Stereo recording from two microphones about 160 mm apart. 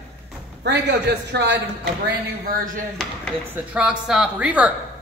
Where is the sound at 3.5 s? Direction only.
10° right (ahead or behind).